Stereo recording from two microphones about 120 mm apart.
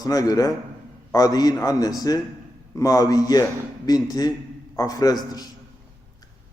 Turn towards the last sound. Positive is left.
turn(degrees=30)  # may be behind; listen again after turning